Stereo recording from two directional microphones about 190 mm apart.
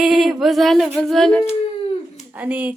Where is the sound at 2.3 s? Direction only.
10° right (ahead or behind).